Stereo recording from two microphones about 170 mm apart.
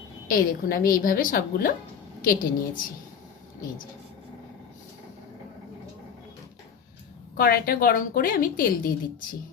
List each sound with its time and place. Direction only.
0.3 s a woman's voice: 55° left (ahead or behind)
7.3 s a woman's voice: 60° left (ahead or behind)